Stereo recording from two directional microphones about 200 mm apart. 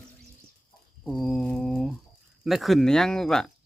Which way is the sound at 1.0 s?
Centre (ahead or behind).